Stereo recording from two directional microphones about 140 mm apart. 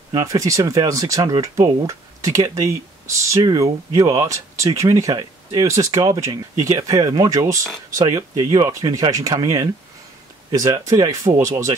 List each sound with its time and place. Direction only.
0.1 s speech: 25° right (ahead or behind)